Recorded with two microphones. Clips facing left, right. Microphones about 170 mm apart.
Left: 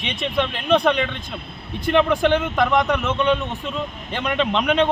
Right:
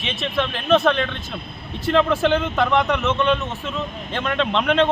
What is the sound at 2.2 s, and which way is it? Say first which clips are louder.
Speech: left 1 dB; 10° left (ahead or behind).